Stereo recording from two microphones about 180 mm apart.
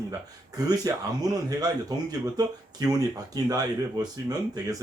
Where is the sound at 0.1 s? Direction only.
20° right (ahead or behind).